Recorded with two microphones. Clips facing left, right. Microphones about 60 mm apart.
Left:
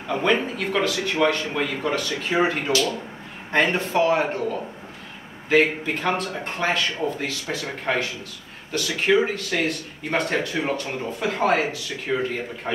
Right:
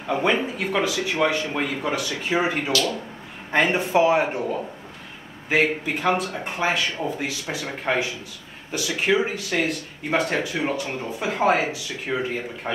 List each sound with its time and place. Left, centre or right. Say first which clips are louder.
0.1 s speech: even; centre